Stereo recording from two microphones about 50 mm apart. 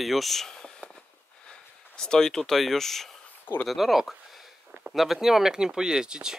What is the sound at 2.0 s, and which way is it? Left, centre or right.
Speech, centre.